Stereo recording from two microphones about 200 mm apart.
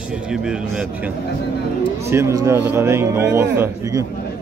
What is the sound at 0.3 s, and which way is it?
Speech, 5° right (ahead or behind).